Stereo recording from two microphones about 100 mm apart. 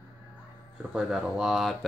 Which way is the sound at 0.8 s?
5° right (ahead or behind).